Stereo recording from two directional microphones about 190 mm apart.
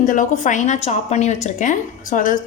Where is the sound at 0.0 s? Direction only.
40° left (ahead or behind).